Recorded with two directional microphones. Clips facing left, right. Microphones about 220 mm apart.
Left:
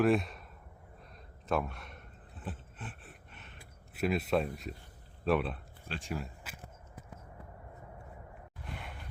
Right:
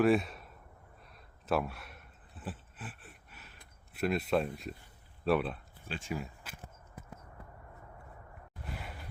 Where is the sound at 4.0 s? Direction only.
Centre (ahead or behind).